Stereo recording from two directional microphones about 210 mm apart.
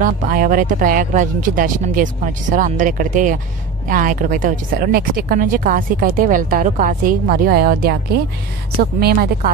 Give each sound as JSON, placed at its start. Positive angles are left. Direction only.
{"t": 0.0, "sound": "speech", "side_deg": -40}
{"t": 9.0, "sound": "speech", "side_deg": -45}